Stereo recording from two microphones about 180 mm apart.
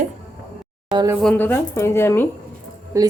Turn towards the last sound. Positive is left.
turn(degrees=-15)  # may be behind; listen again after turning